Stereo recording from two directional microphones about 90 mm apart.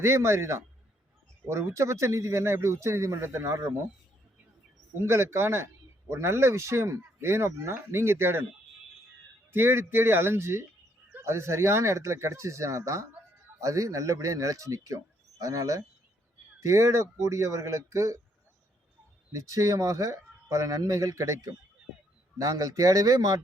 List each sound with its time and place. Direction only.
0.0 s speech: 30° right (ahead or behind)
4.9 s speech: 30° right (ahead or behind)
9.5 s speech: 25° right (ahead or behind)
19.3 s speech: 35° right (ahead or behind)